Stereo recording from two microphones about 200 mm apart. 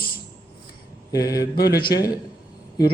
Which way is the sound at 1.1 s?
15° left (ahead or behind).